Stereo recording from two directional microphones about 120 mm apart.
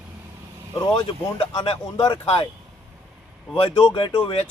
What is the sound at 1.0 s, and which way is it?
Speech, 55° left (ahead or behind).